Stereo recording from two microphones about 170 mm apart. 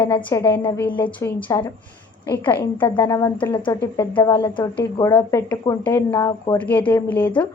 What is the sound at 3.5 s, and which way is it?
Speech, 30° left (ahead or behind).